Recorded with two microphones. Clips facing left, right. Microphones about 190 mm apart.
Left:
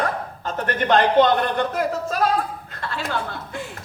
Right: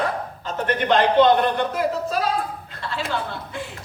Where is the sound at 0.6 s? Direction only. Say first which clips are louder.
Even; 45° left (ahead or behind).